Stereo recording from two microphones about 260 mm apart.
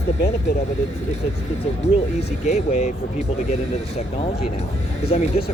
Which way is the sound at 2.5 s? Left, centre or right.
Left.